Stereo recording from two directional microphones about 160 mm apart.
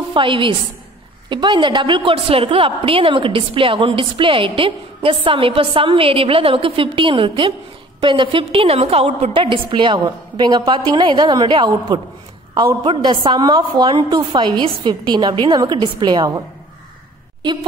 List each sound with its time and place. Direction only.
0.1 s a woman's voice: 30° right (ahead or behind)